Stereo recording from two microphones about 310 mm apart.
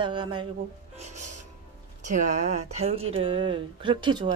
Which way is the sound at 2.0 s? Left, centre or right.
Right.